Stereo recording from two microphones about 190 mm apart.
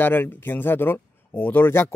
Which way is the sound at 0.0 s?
10° left (ahead or behind).